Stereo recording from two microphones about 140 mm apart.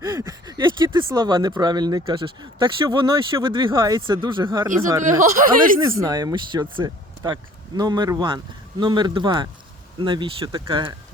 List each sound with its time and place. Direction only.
0.0 s speech: 25° right (ahead or behind)
4.6 s speech: 20° right (ahead or behind)
5.3 s speech: 80° right
6.0 s speech: 25° right (ahead or behind)